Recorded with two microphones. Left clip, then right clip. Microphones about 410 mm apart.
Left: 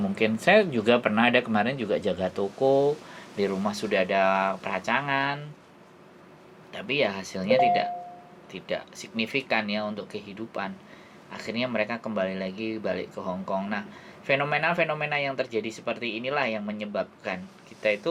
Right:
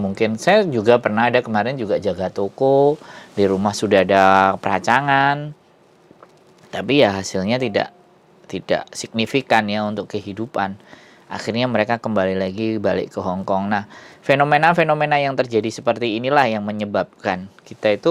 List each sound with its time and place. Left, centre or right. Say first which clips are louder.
0.1 s speech: right 5 dB; right
3.3 s speech: right 10 dB; right
6.7 s speech: right 11 dB; right